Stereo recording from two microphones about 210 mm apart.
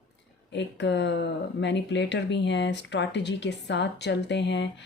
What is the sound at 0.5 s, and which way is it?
Speech, 55° left (ahead or behind).